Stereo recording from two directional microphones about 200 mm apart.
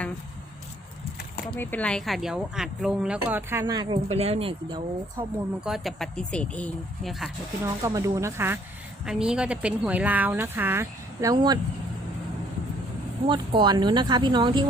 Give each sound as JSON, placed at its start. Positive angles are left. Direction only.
{"t": 1.5, "sound": "speech", "side_deg": 10}
{"t": 5.5, "sound": "speech", "side_deg": 0}
{"t": 7.9, "sound": "speech", "side_deg": -15}
{"t": 13.2, "sound": "speech", "side_deg": -25}